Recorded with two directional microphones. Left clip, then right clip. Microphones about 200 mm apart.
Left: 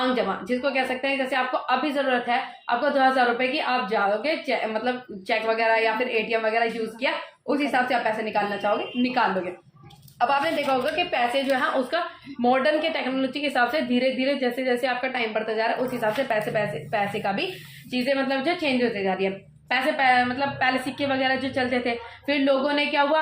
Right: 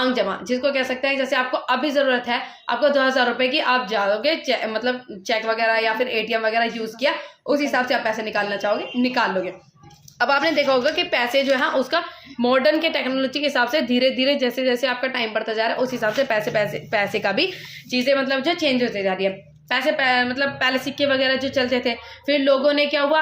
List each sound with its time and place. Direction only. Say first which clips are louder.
0.0 s a woman's voice: right 3 dB; 30° right (ahead or behind)
10.2 s a woman's voice: right 4 dB; 45° right (ahead or behind)
17.9 s a woman's voice: right 4 dB; 35° right (ahead or behind)